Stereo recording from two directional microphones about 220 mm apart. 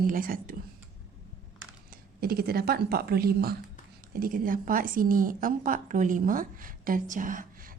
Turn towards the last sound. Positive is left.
turn(degrees=-40)  # may be behind; listen again after turning